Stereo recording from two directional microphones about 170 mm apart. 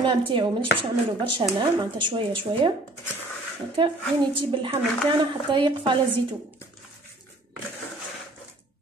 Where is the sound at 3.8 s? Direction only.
30° right (ahead or behind).